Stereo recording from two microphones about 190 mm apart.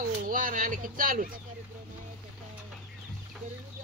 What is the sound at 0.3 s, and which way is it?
Speech, 45° right (ahead or behind).